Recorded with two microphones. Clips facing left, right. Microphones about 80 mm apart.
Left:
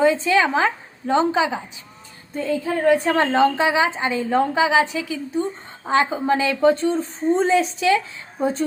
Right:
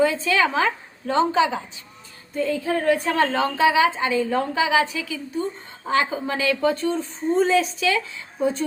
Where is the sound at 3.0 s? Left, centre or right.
Left.